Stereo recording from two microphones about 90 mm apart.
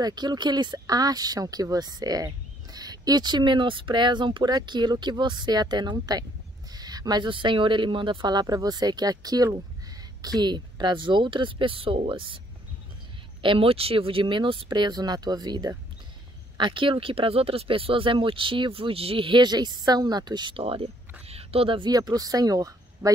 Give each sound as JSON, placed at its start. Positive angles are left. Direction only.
{"t": 0.0, "sound": "speech", "side_deg": -50}
{"t": 6.7, "sound": "a sound", "side_deg": -45}
{"t": 7.2, "sound": "speech", "side_deg": -70}
{"t": 13.4, "sound": "speech", "side_deg": -80}
{"t": 16.5, "sound": "speech", "side_deg": -65}
{"t": 20.5, "sound": "speech", "side_deg": -90}
{"t": 21.9, "sound": "speech", "side_deg": -45}